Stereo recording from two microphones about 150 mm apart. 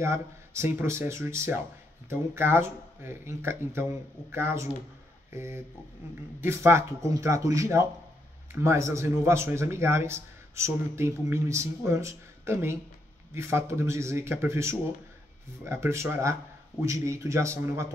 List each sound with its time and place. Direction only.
0.0 s speech: 20° right (ahead or behind)